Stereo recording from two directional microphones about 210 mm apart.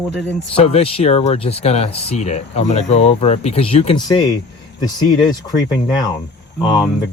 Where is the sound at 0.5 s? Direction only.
30° left (ahead or behind).